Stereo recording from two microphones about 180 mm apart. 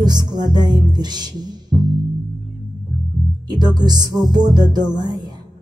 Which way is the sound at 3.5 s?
25° right (ahead or behind).